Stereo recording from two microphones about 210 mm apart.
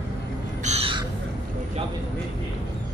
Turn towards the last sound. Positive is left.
turn(degrees=-25)  # may be behind; listen again after turning